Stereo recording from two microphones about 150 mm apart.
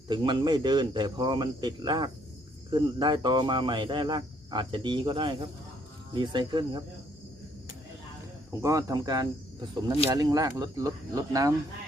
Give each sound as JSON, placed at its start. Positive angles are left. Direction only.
{"t": 0.1, "sound": "speech", "side_deg": -30}
{"t": 8.6, "sound": "speech", "side_deg": -20}